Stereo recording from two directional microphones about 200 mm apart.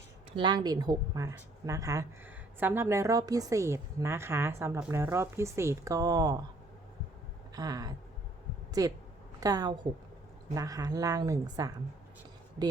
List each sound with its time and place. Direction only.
0.3 s speech: 20° right (ahead or behind)
7.5 s a woman's voice: 20° right (ahead or behind)